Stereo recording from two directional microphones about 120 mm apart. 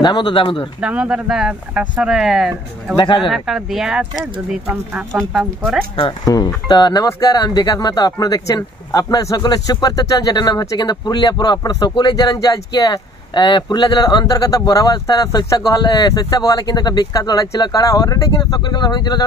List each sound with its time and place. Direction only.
0.0 s speech: 40° left (ahead or behind)
0.7 s speech: 10° right (ahead or behind)
3.0 s speech: 40° left (ahead or behind)
3.3 s speech: centre (ahead or behind)
5.3 s speech: 5° right (ahead or behind)
5.9 s speech: 45° left (ahead or behind)